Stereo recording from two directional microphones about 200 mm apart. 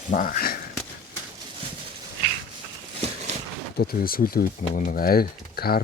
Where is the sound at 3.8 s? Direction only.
45° left (ahead or behind).